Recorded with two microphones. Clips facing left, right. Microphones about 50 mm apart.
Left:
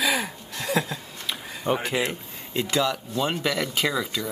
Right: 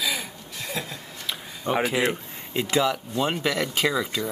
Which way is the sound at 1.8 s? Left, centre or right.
Centre.